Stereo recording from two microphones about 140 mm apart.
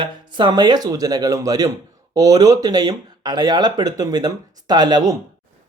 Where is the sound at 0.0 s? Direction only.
35° right (ahead or behind).